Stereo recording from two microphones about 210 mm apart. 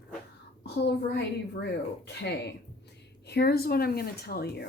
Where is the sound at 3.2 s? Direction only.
50° left (ahead or behind).